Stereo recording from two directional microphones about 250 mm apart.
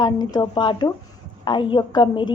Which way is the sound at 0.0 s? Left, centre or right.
Centre.